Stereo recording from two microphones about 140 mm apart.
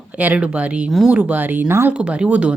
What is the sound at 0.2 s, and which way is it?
A woman's voice, 10° right (ahead or behind).